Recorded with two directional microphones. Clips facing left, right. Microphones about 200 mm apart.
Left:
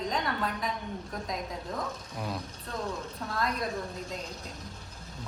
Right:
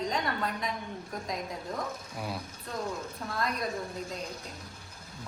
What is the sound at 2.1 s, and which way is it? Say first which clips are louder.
Speech: left 2 dB; 5° right (ahead or behind).